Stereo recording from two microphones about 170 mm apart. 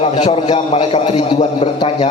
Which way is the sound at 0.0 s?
35° left (ahead or behind).